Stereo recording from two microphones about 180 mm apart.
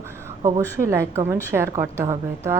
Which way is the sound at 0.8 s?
15° right (ahead or behind).